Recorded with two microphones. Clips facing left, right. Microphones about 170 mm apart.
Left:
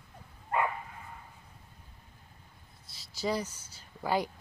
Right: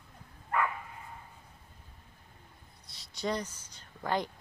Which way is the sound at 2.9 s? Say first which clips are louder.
Left 1 dB; centre (ahead or behind).